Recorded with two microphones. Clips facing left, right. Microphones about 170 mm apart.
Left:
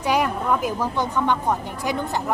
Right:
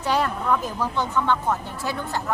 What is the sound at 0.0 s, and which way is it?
A woman's voice, 10° left (ahead or behind).